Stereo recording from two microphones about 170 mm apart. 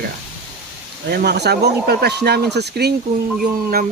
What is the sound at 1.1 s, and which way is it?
Speech, 75° right (ahead or behind).